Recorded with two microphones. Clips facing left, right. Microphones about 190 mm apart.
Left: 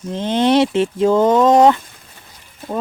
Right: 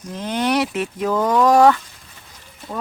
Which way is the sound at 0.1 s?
25° left (ahead or behind).